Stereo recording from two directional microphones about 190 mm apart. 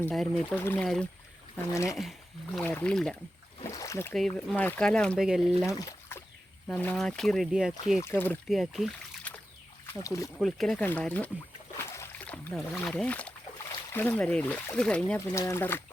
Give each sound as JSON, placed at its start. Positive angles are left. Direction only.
{"t": 0.0, "sound": "speech", "side_deg": 5}
{"t": 1.7, "sound": "speech", "side_deg": 15}
{"t": 3.7, "sound": "boat", "side_deg": 15}
{"t": 4.1, "sound": "speech", "side_deg": 0}
{"t": 5.8, "sound": "a sound", "side_deg": 15}
{"t": 6.7, "sound": "speech", "side_deg": 5}
{"t": 7.9, "sound": "speech", "side_deg": 15}
{"t": 8.4, "sound": "speech", "side_deg": 0}
{"t": 9.8, "sound": "speech", "side_deg": 15}
{"t": 10.3, "sound": "speech", "side_deg": 0}
{"t": 11.8, "sound": "boat", "side_deg": 15}
{"t": 13.9, "sound": "speech", "side_deg": 10}
{"t": 15.3, "sound": "speech", "side_deg": 15}